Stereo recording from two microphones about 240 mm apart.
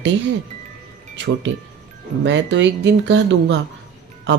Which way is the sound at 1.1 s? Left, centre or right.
Right.